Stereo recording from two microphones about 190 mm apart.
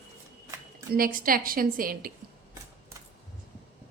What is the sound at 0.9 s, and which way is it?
A woman's voice, 50° right (ahead or behind).